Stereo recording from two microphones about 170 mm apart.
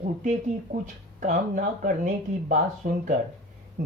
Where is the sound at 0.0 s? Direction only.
45° right (ahead or behind).